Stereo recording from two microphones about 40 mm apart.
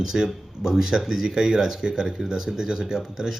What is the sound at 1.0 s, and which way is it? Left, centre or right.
Speech, centre.